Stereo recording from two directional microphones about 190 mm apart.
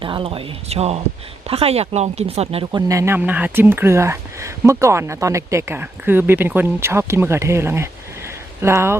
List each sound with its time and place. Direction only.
0.0 s speech: 25° right (ahead or behind)
2.9 s speech: 15° right (ahead or behind)